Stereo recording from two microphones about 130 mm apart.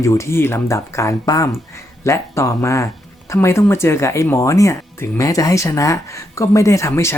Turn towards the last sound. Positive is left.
turn(degrees=20)  # may be behind; listen again after turning